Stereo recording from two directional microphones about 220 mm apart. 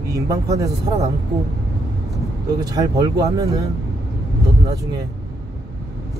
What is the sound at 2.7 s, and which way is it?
Speech, 15° right (ahead or behind).